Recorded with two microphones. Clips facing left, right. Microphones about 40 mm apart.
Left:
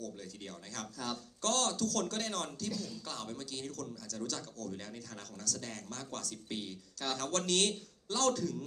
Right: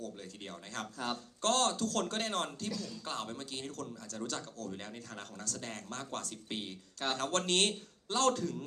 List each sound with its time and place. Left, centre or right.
0.0 s speech: right